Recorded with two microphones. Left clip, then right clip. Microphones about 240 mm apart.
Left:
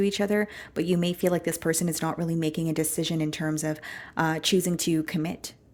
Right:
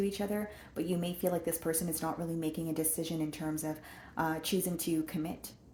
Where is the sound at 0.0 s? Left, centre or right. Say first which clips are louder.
Left 10 dB; left.